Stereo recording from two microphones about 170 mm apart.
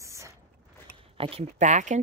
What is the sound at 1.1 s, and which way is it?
Speech, 35° right (ahead or behind).